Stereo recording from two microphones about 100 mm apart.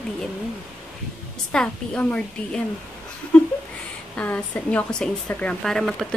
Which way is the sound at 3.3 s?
15° left (ahead or behind).